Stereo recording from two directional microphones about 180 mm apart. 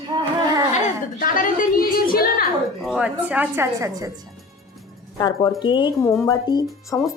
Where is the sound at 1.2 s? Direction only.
50° left (ahead or behind).